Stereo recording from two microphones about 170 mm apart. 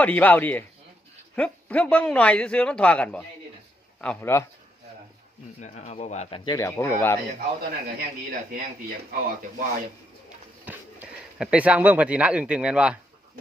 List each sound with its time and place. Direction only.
0.0 s speech: 10° left (ahead or behind)
5.5 s a man's voice: 45° left (ahead or behind)
6.4 s speech: 20° left (ahead or behind)
7.3 s a man's voice: 60° right (ahead or behind)
10.7 s speech: 10° right (ahead or behind)